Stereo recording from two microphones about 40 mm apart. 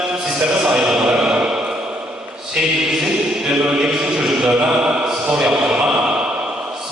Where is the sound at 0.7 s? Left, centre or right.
Centre.